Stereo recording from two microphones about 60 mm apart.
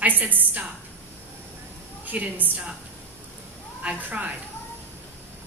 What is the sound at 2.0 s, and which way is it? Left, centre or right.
Speech, right.